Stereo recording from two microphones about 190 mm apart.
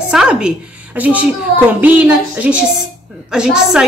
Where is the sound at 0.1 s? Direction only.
5° right (ahead or behind).